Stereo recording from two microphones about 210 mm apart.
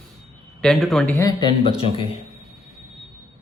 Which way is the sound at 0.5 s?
Centre (ahead or behind).